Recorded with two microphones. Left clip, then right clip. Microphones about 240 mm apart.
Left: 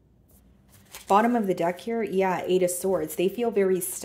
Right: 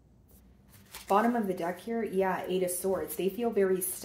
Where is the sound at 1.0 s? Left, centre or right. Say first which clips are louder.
Left 6 dB; left.